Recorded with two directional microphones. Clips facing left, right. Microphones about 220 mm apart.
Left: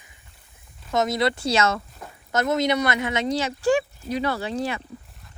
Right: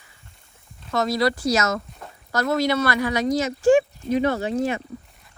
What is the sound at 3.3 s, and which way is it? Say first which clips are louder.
Speech: right 5 dB; 35° left (ahead or behind).